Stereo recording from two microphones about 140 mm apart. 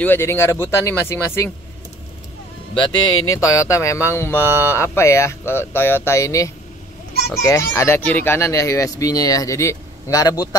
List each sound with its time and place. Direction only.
0.0 s speech: 15° left (ahead or behind)
3.1 s speech: 25° left (ahead or behind)